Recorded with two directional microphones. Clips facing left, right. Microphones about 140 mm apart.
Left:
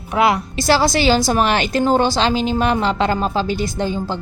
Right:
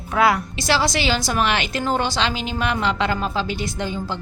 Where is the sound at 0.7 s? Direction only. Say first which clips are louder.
Left 6 dB; 40° left (ahead or behind).